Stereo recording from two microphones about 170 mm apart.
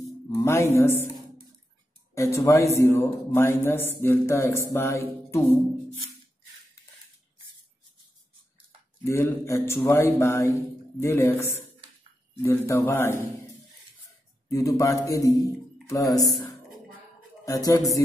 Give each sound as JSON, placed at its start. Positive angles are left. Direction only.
{"t": 0.4, "sound": "speech", "side_deg": 15}
{"t": 2.1, "sound": "speech", "side_deg": 15}
{"t": 9.0, "sound": "speech", "side_deg": 15}
{"t": 14.5, "sound": "a man's voice", "side_deg": 20}
{"t": 16.2, "sound": "a sound", "side_deg": 20}
{"t": 17.5, "sound": "a man's voice", "side_deg": 20}